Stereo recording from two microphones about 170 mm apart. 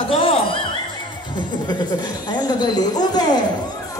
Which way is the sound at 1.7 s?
25° left (ahead or behind).